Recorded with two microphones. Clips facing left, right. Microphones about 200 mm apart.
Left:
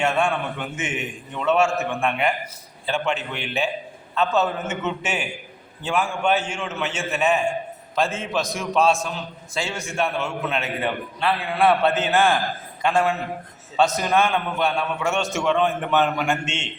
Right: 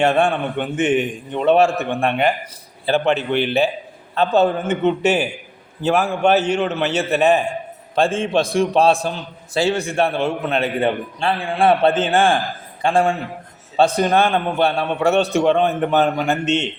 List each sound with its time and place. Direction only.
0.0 s a man's voice: 35° right (ahead or behind)